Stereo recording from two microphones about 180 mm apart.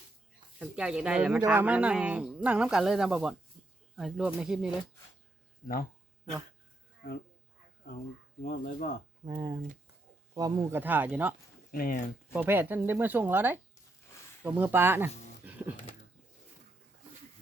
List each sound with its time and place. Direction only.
0.6 s speech: 5° right (ahead or behind)
8.4 s speech: 55° left (ahead or behind)
9.2 s speech: 25° right (ahead or behind)
10.8 s speech: 10° right (ahead or behind)
11.7 s speech: 50° left (ahead or behind)
12.3 s speech: 10° right (ahead or behind)
15.4 s music: 10° right (ahead or behind)